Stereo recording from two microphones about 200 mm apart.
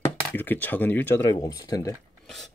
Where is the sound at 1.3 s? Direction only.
20° left (ahead or behind).